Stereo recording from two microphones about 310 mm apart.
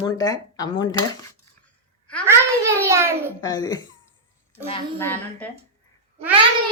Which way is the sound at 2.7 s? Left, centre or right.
Centre.